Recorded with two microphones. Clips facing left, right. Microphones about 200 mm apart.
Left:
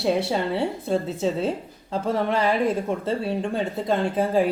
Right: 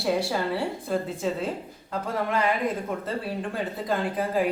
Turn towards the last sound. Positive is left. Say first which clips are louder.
# left 4 dB
turn(degrees=30)  # may be behind; listen again after turning